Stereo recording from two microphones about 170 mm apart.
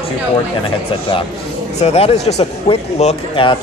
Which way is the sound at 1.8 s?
40° left (ahead or behind).